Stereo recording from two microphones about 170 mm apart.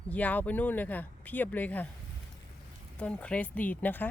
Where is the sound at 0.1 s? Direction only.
10° left (ahead or behind).